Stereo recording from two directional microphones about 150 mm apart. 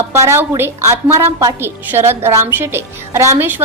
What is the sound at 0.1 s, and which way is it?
A woman's voice, 15° right (ahead or behind).